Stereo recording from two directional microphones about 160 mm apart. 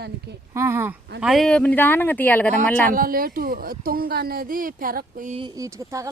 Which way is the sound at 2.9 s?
60° right (ahead or behind).